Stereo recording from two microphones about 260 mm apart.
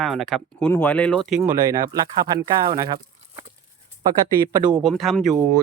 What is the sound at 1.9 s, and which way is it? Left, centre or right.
Speech, centre.